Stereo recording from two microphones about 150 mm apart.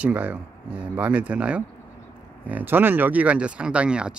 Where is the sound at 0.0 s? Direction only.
10° right (ahead or behind).